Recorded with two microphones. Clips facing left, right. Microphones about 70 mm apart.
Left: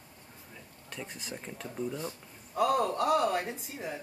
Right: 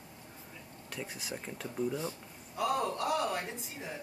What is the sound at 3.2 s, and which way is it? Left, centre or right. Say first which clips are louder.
Speech: left 5 dB; centre.